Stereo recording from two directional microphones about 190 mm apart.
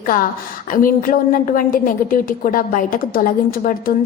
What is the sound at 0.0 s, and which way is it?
A woman's voice, 45° left (ahead or behind).